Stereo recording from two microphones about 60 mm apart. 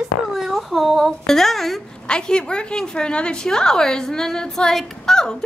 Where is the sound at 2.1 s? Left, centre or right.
Centre.